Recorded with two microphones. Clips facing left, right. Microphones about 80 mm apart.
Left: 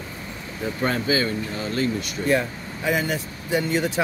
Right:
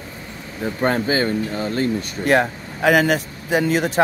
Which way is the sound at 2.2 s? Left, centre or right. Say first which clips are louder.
Right 5 dB; right.